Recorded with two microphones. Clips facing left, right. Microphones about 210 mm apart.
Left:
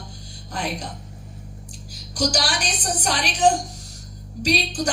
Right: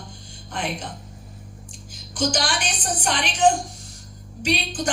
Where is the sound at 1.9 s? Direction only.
40° left (ahead or behind).